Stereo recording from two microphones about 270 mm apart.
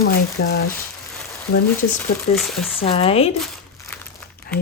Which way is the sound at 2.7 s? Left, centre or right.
Left.